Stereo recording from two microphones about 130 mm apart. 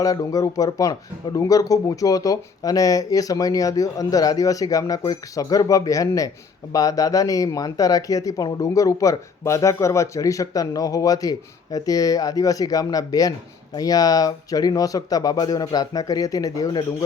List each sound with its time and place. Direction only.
0.0 s speech: 25° left (ahead or behind)